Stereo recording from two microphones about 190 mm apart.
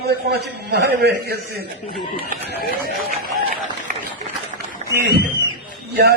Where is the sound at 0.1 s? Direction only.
55° right (ahead or behind).